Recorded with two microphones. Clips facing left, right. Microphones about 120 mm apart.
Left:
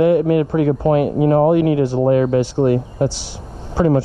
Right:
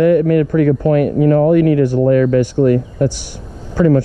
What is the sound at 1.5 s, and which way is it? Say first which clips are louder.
Speech: right 3 dB; 50° right (ahead or behind).